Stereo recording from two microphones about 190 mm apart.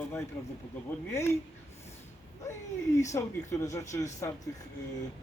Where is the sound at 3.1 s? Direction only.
15° left (ahead or behind).